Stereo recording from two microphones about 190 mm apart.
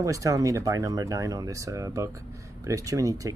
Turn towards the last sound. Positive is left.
turn(degrees=-15)  # may be behind; listen again after turning